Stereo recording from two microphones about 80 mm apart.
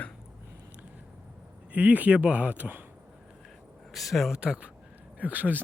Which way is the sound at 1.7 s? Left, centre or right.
Centre.